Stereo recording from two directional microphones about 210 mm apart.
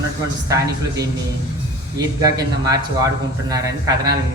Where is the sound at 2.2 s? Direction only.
15° right (ahead or behind).